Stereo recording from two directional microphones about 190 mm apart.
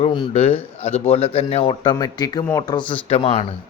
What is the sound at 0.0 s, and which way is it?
A man's voice, 30° left (ahead or behind).